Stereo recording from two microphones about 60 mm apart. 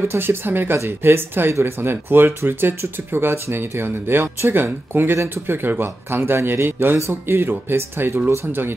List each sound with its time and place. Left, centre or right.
0.1 s speech: right